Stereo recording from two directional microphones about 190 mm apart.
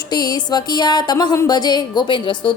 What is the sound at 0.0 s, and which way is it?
Music, 20° left (ahead or behind).